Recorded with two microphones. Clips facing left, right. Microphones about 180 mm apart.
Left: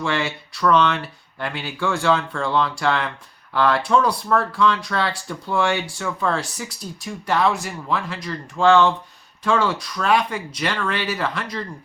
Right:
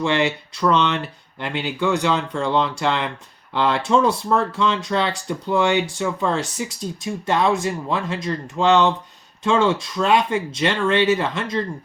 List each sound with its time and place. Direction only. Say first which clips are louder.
0.0 s speech: right 4 dB; 20° right (ahead or behind)